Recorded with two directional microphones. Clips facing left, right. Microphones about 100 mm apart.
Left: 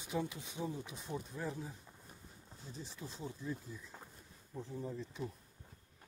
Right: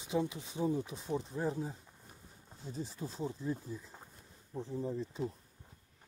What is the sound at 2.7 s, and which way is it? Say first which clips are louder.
Speech: right 8 dB; 30° right (ahead or behind).